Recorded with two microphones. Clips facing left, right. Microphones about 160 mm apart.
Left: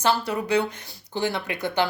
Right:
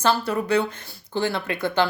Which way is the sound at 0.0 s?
15° left (ahead or behind).